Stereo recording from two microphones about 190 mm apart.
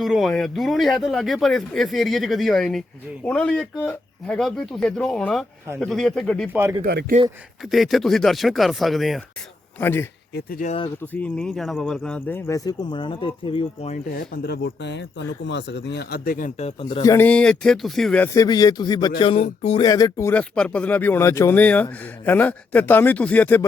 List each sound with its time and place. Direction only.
0.0 s speech: centre (ahead or behind)
6.5 s speech: 10° right (ahead or behind)
7.2 s speech: 35° right (ahead or behind)
7.7 s speech: centre (ahead or behind)
9.8 s speech: 10° left (ahead or behind)
10.3 s speech: 50° left (ahead or behind)
10.7 s speech: 30° left (ahead or behind)
11.1 s speech: 5° left (ahead or behind); by 13.9 s 25° left (ahead or behind)
13.9 s speech: 50° left (ahead or behind)
16.8 s speech: 20° left (ahead or behind)
17.2 s speech: 5° left (ahead or behind)
18.3 s speech: 20° left (ahead or behind)